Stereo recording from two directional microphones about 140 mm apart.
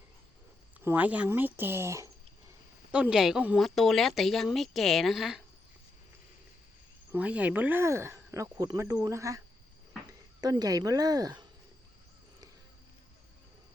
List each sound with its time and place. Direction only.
0.9 s speech: 10° right (ahead or behind)
2.9 s speech: 5° right (ahead or behind)
7.1 s speech: 10° right (ahead or behind); by 11.4 s 30° right (ahead or behind)